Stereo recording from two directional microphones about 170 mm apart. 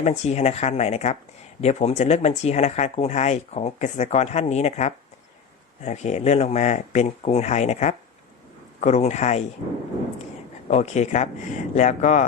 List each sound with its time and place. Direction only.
0.0 s speech: 40° left (ahead or behind)
10.7 s speech: 40° left (ahead or behind)